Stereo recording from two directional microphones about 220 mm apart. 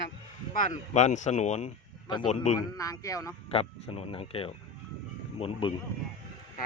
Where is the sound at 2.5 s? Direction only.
15° left (ahead or behind).